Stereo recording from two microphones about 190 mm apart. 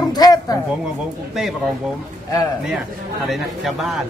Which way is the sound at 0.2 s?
20° left (ahead or behind).